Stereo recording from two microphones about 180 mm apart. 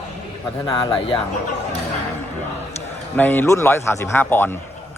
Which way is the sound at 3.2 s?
10° left (ahead or behind).